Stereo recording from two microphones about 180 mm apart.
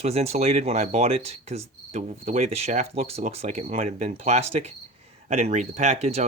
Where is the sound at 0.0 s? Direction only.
35° right (ahead or behind).